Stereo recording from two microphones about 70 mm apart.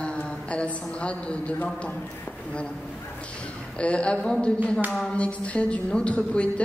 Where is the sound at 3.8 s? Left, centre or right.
Centre.